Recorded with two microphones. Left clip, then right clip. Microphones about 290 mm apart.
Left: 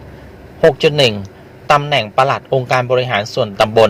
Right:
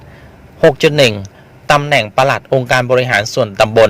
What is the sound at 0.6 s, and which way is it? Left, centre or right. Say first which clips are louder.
A man's voice: right 2 dB; right.